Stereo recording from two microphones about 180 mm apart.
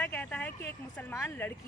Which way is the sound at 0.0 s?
10° left (ahead or behind).